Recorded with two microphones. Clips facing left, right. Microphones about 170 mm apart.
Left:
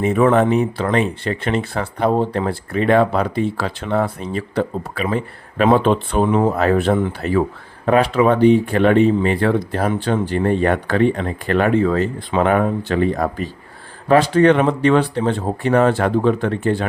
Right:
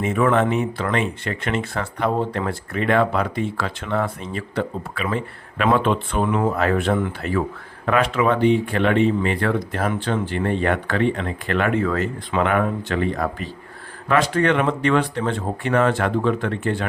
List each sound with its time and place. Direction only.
0.0 s speech: 35° left (ahead or behind)